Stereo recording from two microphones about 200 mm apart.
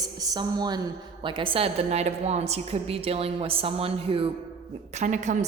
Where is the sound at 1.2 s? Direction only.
25° right (ahead or behind).